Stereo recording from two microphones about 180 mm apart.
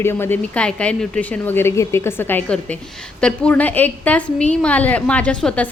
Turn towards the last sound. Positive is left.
turn(degrees=5)  # may be behind; listen again after turning